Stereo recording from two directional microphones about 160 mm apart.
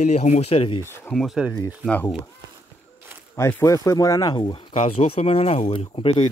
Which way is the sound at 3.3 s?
15° left (ahead or behind).